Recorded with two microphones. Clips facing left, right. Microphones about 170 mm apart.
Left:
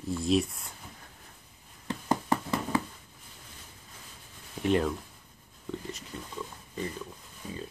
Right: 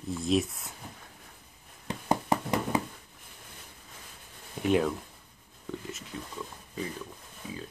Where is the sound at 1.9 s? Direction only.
15° right (ahead or behind).